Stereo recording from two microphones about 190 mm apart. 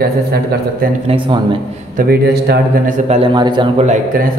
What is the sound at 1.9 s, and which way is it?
Speech, 50° right (ahead or behind).